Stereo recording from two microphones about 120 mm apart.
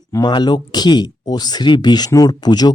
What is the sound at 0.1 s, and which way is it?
Speech, 35° left (ahead or behind).